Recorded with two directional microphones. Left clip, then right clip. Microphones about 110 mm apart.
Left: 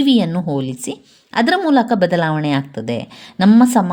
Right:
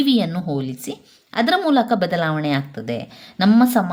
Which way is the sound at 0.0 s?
35° left (ahead or behind).